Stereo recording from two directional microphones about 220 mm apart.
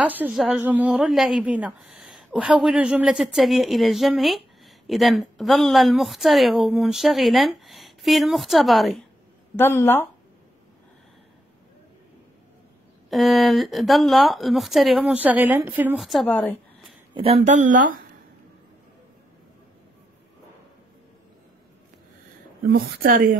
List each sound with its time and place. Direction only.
0.0 s speech: 5° right (ahead or behind); by 10.0 s 10° left (ahead or behind)
13.1 s speech: centre (ahead or behind)
17.1 s speech: 25° right (ahead or behind)
22.6 s a woman's voice: 45° right (ahead or behind)